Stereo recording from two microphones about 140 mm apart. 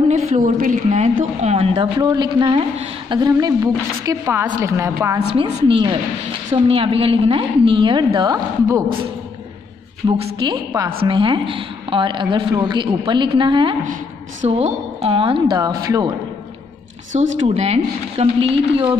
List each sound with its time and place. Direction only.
0.1 s a woman's voice: 65° right (ahead or behind); by 1.9 s 45° right (ahead or behind)
2.0 s a woman's voice: 30° right (ahead or behind)
5.3 s a woman's voice: 40° right (ahead or behind)
10.0 s a woman's voice: 35° right (ahead or behind)
14.4 s a woman's voice: 45° right (ahead or behind)
15.5 s a woman's voice: 25° right (ahead or behind)
17.1 s a woman's voice: 55° right (ahead or behind)